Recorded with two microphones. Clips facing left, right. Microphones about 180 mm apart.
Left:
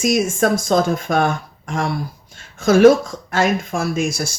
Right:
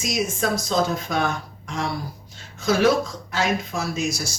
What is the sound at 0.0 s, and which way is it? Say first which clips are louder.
Speech: left 7 dB; 50° left (ahead or behind).